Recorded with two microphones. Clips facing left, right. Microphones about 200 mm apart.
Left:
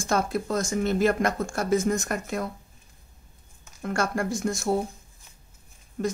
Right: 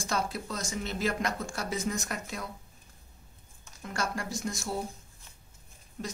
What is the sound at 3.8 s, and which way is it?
Speech, 55° left (ahead or behind).